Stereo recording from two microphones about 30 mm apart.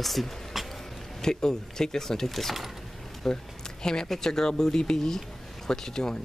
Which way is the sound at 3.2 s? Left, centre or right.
Left.